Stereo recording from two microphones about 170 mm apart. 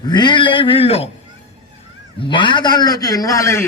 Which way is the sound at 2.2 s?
30° left (ahead or behind).